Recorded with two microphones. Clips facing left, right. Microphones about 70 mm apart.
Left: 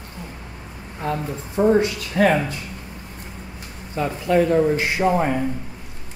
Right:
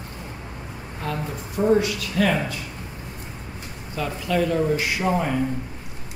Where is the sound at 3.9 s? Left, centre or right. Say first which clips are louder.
Left 5 dB; left.